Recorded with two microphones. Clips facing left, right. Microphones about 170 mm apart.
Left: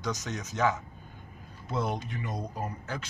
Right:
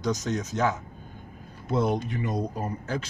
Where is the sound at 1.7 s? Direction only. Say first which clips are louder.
Right 7 dB; 35° right (ahead or behind).